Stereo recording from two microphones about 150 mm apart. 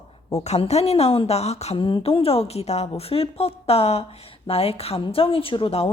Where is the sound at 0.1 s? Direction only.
45° left (ahead or behind).